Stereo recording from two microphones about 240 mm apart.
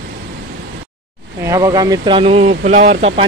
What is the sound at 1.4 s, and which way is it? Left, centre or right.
Speech, centre.